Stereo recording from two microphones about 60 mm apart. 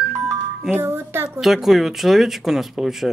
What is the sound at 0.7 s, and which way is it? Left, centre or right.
Speech, right.